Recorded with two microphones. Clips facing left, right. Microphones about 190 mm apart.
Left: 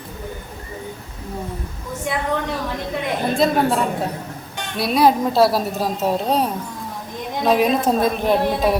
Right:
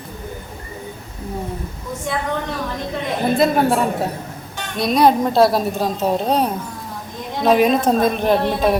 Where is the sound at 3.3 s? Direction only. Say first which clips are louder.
Right 2 dB; 5° right (ahead or behind).